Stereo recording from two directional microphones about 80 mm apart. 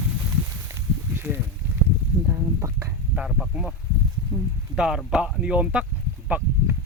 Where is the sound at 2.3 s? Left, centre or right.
Right.